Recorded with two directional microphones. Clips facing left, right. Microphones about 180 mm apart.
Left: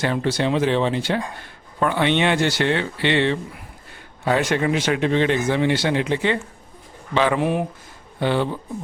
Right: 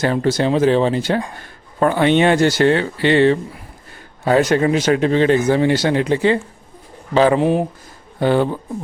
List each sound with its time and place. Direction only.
0.0 s speech: 40° right (ahead or behind)
8.2 s speech: 45° right (ahead or behind)